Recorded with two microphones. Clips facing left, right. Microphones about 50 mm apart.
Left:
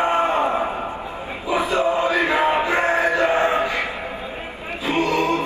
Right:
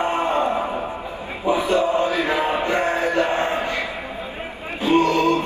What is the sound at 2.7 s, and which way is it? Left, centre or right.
Music, left.